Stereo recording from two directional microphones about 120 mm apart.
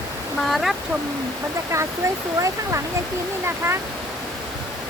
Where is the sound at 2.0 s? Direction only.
25° right (ahead or behind).